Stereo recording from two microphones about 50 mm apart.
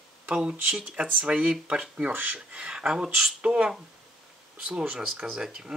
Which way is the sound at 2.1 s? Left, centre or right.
Right.